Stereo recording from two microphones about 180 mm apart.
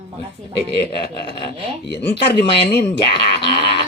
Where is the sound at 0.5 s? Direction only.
70° left (ahead or behind).